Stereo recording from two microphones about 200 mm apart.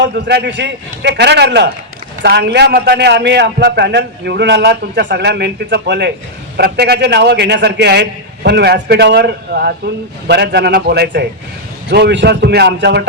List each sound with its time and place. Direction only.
0.0 s a man's voice: 55° right (ahead or behind)